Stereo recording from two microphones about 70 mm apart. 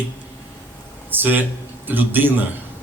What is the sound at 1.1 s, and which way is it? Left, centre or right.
A man's voice, right.